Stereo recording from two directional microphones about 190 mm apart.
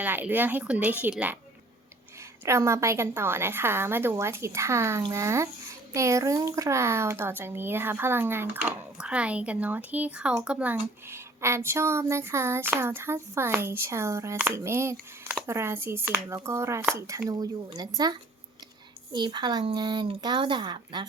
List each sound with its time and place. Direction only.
0.0 s a child's voice: 10° right (ahead or behind)
2.4 s a child's voice: 15° right (ahead or behind)